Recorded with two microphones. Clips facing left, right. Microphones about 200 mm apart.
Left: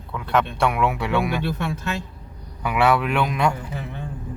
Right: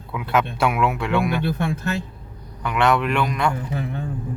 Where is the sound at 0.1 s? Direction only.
5° right (ahead or behind).